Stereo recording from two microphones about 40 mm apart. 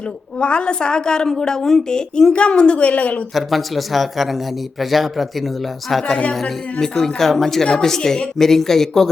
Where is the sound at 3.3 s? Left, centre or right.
Centre.